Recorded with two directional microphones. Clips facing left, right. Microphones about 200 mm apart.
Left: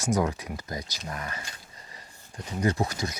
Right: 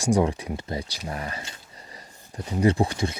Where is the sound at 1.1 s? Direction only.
30° right (ahead or behind).